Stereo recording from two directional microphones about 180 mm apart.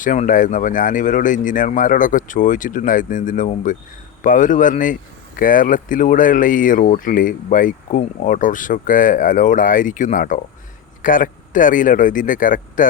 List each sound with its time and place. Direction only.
0.0 s speech: 45° left (ahead or behind)